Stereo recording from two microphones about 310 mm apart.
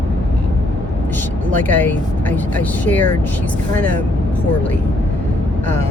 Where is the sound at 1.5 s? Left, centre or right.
Centre.